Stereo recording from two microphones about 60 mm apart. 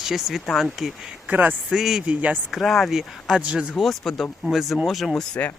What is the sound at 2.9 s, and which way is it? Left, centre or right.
Speech, centre.